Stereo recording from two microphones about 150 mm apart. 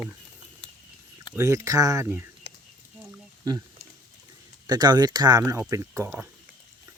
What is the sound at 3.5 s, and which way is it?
Speech, 30° right (ahead or behind).